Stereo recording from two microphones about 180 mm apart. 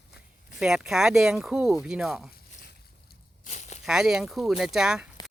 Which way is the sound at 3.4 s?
40° left (ahead or behind).